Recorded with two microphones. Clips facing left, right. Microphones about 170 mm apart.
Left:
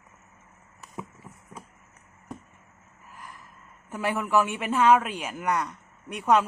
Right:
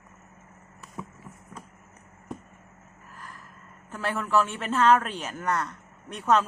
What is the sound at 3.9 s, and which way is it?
A man's voice, 15° left (ahead or behind).